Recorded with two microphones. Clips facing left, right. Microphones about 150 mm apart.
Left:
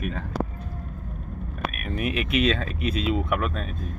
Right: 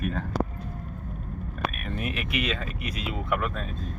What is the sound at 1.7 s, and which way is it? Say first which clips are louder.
Speech: left 4 dB; 10° left (ahead or behind).